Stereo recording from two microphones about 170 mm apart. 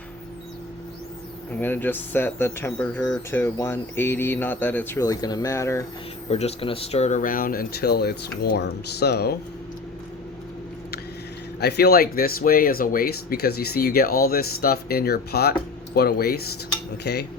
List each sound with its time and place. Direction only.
1.6 s speech: 10° left (ahead or behind)
6.3 s speech: 35° left (ahead or behind); by 9.3 s 70° left (ahead or behind)
11.6 s speech: 70° left (ahead or behind)